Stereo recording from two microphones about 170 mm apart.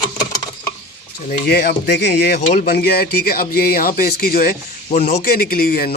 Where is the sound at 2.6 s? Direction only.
65° left (ahead or behind).